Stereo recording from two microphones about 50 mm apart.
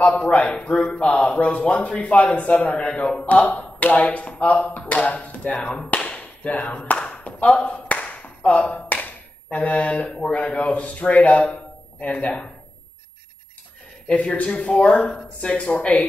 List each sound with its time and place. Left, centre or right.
0.3 s speech: left
2.9 s speech: centre
3.3 s speech: left
5.6 s clapping: left
8.8 s tap: left
9.6 s a man's voice: left
14.0 s speech: left
15.0 s speech: centre